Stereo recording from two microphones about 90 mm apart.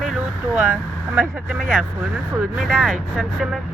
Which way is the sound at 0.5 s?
15° right (ahead or behind).